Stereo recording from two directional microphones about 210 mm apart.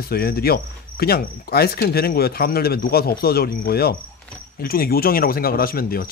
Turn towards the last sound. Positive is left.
turn(degrees=45)  # may be behind; listen again after turning